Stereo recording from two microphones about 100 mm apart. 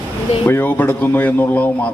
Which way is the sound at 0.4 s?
20° left (ahead or behind).